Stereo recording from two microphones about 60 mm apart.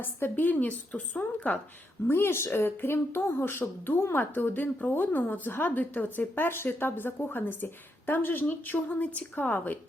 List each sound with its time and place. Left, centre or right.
0.0 s a woman's voice: left
2.0 s a woman's voice: left